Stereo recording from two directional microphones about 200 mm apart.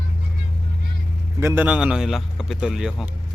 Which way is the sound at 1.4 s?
10° right (ahead or behind).